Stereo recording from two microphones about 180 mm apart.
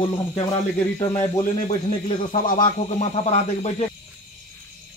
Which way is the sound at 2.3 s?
45° left (ahead or behind).